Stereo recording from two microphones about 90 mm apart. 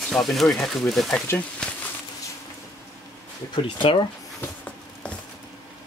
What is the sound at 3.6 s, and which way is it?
Speech, 60° left (ahead or behind).